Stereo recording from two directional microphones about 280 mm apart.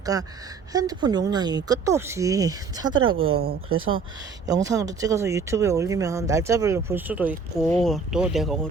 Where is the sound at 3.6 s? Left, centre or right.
Right.